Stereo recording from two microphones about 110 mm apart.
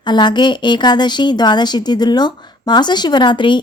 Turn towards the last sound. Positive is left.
turn(degrees=45)  # may be behind; listen again after turning